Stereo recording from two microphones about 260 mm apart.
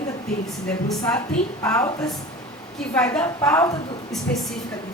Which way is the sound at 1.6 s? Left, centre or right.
Centre.